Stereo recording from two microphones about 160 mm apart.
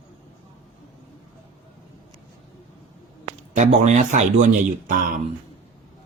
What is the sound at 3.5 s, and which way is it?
Speech, 45° right (ahead or behind).